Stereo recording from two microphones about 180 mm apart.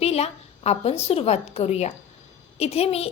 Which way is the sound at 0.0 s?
35° left (ahead or behind).